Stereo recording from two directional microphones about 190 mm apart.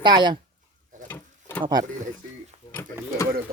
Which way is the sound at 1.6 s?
20° right (ahead or behind).